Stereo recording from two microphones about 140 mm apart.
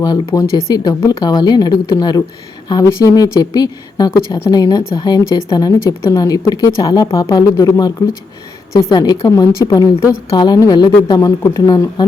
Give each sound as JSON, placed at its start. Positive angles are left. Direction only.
{"t": 0.0, "sound": "speech", "side_deg": 30}